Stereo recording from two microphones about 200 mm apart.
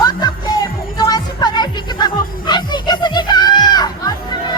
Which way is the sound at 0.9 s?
20° left (ahead or behind).